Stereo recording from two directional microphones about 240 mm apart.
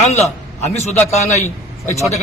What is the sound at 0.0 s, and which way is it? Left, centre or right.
A man's voice, left.